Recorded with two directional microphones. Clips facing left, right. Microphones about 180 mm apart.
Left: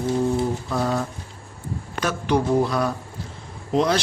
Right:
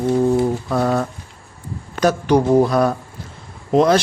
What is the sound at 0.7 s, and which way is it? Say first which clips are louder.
Mantra: right 5 dB; 65° right (ahead or behind).